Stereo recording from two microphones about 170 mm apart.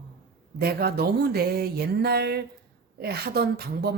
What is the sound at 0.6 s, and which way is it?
A woman's voice, 65° right (ahead or behind).